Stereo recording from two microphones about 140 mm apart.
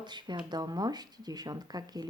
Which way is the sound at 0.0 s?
30° right (ahead or behind).